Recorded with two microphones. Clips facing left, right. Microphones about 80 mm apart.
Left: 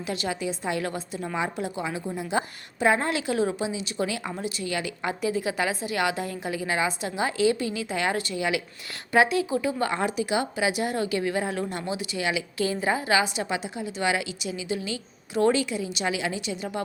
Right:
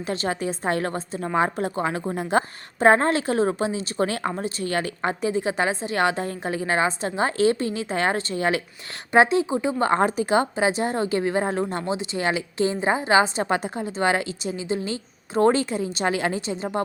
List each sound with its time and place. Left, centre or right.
0.0 s a woman's voice: right
9.1 s a woman's voice: right